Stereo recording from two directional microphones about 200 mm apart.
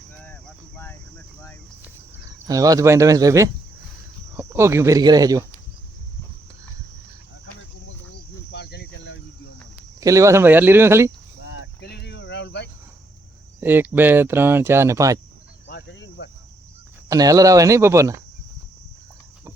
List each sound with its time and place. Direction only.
2.5 s speech: 15° right (ahead or behind)
7.9 s cricket: 60° left (ahead or behind)
10.0 s speech: 15° right (ahead or behind)
11.4 s cricket: 60° left (ahead or behind)
13.6 s speech: 10° right (ahead or behind)
15.6 s cricket: 65° left (ahead or behind)
17.1 s speech: 20° right (ahead or behind)